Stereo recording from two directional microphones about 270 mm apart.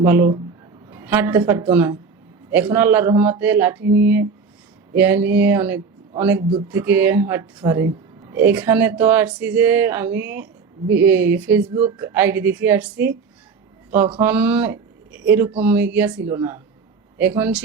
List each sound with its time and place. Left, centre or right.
0.0 s speech: centre
3.8 s speech: right
4.9 s speech: centre
14.2 s speech: centre